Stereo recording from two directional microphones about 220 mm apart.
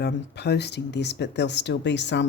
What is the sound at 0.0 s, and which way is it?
Speech, 50° left (ahead or behind).